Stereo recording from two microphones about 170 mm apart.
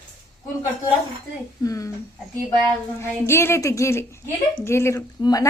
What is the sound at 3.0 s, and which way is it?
A woman's voice, 15° left (ahead or behind).